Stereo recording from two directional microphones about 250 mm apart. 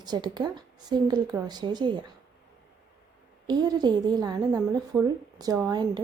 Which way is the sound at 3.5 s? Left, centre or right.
Centre.